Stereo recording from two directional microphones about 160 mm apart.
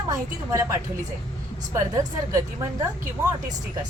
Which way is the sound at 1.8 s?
20° right (ahead or behind).